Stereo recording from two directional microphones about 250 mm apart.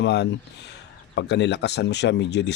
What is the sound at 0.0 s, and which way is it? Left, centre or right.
A man's voice, left.